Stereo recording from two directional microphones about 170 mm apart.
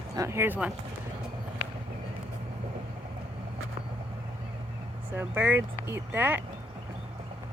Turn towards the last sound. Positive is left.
turn(degrees=-10)  # may be behind; listen again after turning